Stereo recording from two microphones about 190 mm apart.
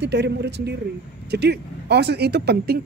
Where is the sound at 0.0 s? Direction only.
60° right (ahead or behind).